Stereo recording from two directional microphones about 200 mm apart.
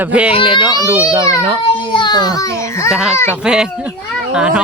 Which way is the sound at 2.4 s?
15° left (ahead or behind).